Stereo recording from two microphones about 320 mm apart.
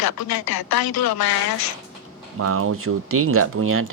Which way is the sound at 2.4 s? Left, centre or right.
Right.